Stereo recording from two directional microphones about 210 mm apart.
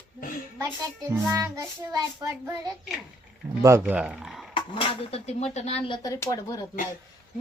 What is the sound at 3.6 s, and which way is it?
Speech, 15° right (ahead or behind).